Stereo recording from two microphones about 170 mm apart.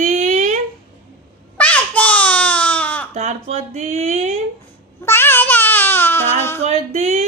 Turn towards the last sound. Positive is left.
turn(degrees=-40)  # may be behind; listen again after turning